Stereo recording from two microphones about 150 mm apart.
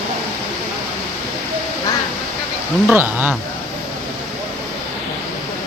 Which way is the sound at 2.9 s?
10° right (ahead or behind).